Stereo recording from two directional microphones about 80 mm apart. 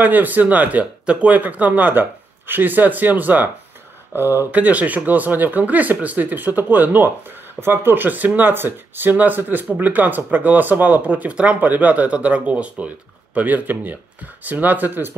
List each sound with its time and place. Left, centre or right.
0.0 s speech: right